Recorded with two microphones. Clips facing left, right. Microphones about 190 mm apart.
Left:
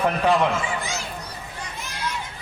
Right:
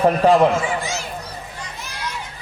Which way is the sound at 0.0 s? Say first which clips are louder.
Right 6 dB; 40° right (ahead or behind).